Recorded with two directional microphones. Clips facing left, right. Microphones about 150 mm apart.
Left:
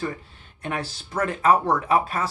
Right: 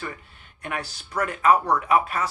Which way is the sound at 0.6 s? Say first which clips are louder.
Left 2 dB; 30° left (ahead or behind).